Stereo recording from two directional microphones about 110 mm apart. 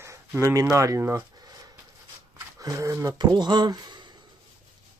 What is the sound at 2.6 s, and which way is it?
Speech, 30° right (ahead or behind).